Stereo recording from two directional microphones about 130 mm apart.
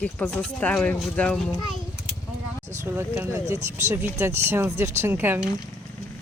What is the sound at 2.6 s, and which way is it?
Speech, 20° right (ahead or behind).